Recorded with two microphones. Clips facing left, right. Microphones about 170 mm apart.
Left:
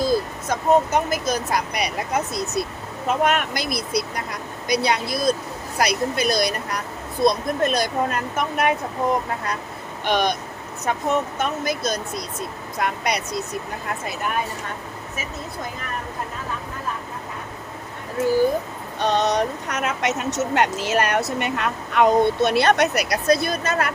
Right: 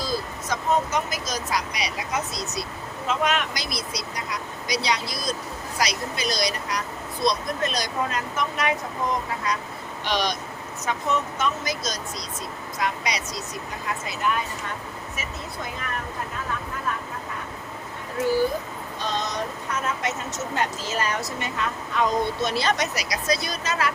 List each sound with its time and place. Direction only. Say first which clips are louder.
0.0 s speech: left 7 dB; 55° left (ahead or behind)
10.0 s speech: left 5 dB; 55° left (ahead or behind)
18.9 s speech: left 9 dB; 65° left (ahead or behind)